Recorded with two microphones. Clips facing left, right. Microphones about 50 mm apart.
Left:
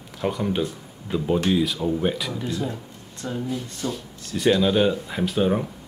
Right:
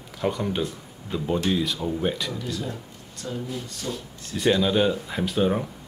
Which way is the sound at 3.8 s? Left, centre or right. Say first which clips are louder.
Left 3 dB; centre.